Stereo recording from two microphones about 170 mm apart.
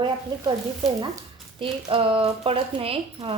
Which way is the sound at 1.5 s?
30° right (ahead or behind).